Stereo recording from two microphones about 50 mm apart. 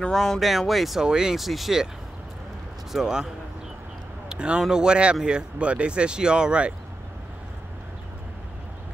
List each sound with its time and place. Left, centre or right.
0.1 s speech: centre
1.0 s speech: centre
2.9 s speech: centre
4.3 s speech: centre